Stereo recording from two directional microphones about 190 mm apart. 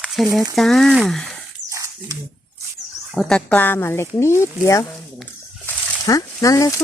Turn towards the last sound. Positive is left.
turn(degrees=15)  # may be behind; listen again after turning